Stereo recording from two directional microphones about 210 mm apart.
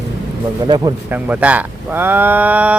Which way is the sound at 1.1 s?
10° right (ahead or behind).